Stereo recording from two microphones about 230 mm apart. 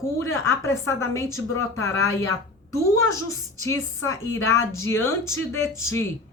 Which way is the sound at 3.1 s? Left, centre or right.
Centre.